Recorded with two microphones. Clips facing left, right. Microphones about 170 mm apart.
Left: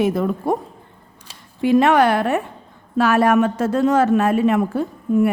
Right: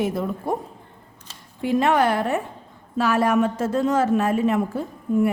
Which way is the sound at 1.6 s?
80° left.